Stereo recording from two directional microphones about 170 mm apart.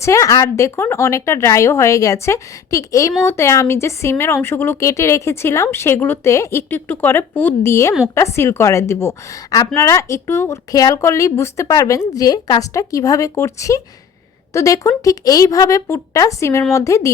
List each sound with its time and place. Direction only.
0.0 s speech: 20° left (ahead or behind)